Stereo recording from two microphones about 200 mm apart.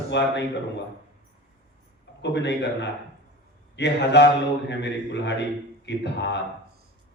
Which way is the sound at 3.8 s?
60° left (ahead or behind).